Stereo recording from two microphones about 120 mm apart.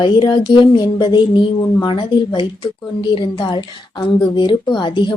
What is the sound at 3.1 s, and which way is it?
Speech, 45° left (ahead or behind).